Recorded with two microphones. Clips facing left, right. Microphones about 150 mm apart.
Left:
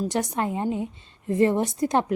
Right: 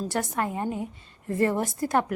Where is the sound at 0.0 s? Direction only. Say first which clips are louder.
Left 2 dB; 20° left (ahead or behind).